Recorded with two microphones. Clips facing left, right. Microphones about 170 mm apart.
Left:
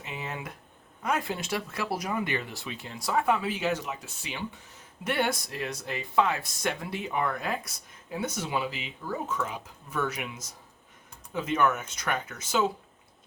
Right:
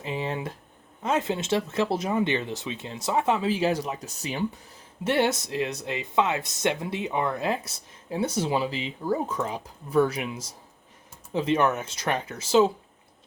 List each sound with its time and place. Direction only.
0.0 s a sound: 30° right (ahead or behind)
1.0 s speech: 25° right (ahead or behind); by 4.6 s 40° right (ahead or behind)
5.0 s speech: 25° right (ahead or behind)
11.3 s speech: 30° right (ahead or behind)